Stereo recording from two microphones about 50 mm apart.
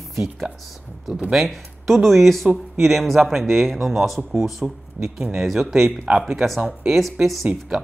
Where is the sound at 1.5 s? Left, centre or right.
Centre.